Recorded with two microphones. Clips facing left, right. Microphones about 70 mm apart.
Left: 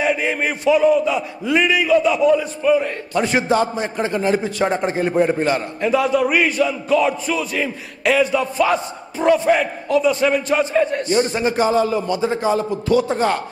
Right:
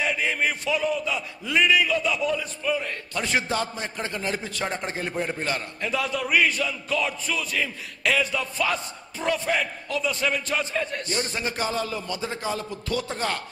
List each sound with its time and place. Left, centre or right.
0.0 s a man's voice: centre